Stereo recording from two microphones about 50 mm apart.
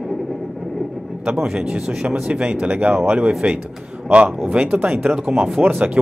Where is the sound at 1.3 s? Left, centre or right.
Centre.